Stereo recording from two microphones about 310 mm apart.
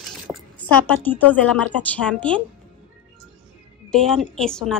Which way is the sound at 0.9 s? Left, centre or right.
Centre.